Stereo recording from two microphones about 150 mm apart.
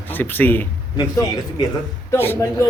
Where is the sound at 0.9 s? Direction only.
25° left (ahead or behind).